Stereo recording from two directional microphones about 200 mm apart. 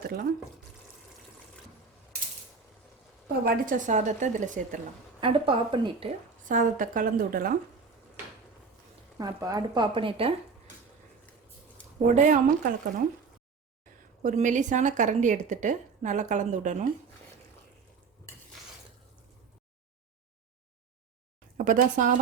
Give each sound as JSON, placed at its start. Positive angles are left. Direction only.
{"t": 0.0, "sound": "speech", "side_deg": -50}
{"t": 3.4, "sound": "a woman's voice", "side_deg": -40}
{"t": 5.2, "sound": "speech", "side_deg": -25}
{"t": 6.5, "sound": "speech", "side_deg": -40}
{"t": 9.1, "sound": "speech", "side_deg": -20}
{"t": 12.0, "sound": "a woman's voice", "side_deg": -40}
{"t": 14.2, "sound": "a woman's voice", "side_deg": -40}
{"t": 21.6, "sound": "a woman's voice", "side_deg": -40}